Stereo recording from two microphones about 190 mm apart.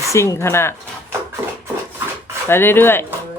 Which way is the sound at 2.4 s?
10° left (ahead or behind).